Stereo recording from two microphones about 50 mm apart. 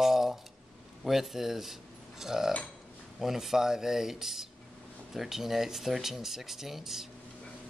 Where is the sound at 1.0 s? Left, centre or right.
Centre.